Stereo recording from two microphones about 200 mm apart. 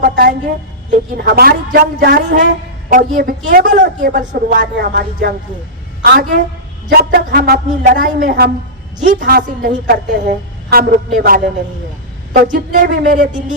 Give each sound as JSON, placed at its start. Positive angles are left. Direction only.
{"t": 0.0, "sound": "music", "side_deg": -50}
{"t": 0.9, "sound": "a man's voice", "side_deg": -50}
{"t": 12.5, "sound": "a sound", "side_deg": -40}